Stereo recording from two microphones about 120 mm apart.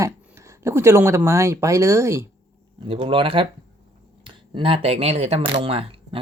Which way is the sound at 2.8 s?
45° right (ahead or behind).